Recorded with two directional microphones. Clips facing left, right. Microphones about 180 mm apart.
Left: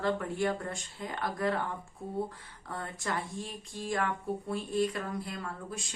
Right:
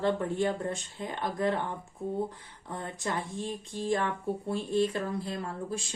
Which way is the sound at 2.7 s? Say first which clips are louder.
Right 2 dB; 20° right (ahead or behind).